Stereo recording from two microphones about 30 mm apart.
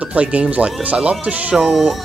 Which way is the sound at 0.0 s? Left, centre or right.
Right.